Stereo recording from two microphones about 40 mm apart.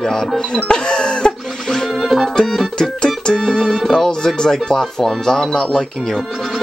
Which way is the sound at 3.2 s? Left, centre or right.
Centre.